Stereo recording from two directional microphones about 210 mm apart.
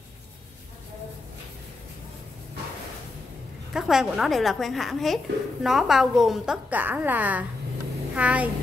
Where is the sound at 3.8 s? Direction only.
Centre (ahead or behind).